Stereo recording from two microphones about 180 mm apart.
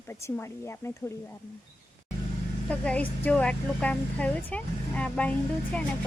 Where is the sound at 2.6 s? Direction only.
5° left (ahead or behind).